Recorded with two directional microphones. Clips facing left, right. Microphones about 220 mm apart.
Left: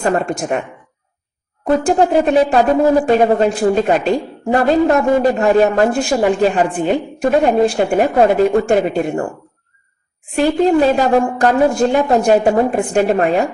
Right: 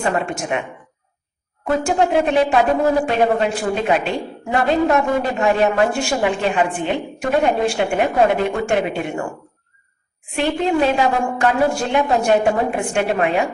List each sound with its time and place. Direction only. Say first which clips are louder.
0.0 s speech: left 4 dB; 40° left (ahead or behind)
1.8 s speech: left 3 dB; 35° left (ahead or behind)
10.3 s speech: left 6 dB; 40° left (ahead or behind)